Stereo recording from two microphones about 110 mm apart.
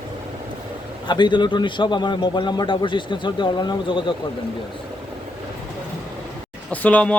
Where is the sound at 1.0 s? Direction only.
45° left (ahead or behind).